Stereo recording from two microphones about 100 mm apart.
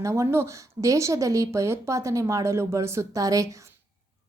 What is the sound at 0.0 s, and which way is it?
A woman's voice, 30° right (ahead or behind).